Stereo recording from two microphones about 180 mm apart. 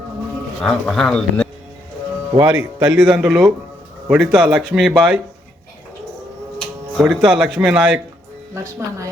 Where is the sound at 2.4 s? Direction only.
10° right (ahead or behind).